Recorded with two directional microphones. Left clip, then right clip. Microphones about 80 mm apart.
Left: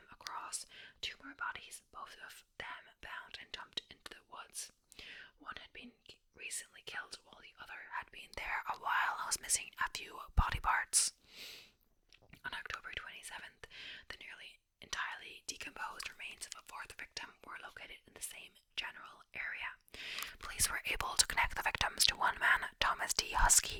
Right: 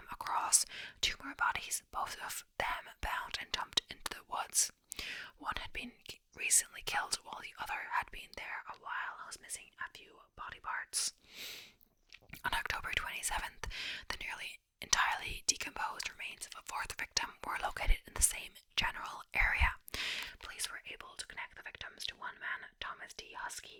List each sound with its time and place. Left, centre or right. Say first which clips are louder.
0.3 s whispering: right 14 dB; right
8.4 s speech: left 5 dB; centre
8.8 s speech: left 8 dB; left
11.3 s sniff: right 4 dB; right
12.3 s speech: right 7 dB; right
16.5 s speech: right 7 dB; right
20.6 s speech: left 9 dB; left